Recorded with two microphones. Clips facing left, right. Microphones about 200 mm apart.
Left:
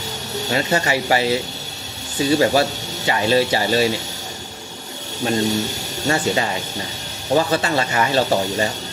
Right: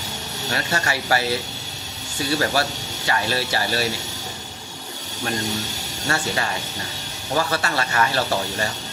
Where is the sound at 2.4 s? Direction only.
20° left (ahead or behind).